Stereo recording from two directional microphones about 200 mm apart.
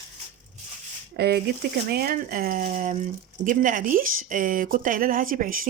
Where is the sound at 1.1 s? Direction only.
55° right (ahead or behind).